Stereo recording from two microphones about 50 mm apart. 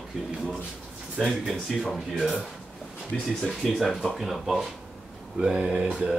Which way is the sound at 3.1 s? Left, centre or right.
Centre.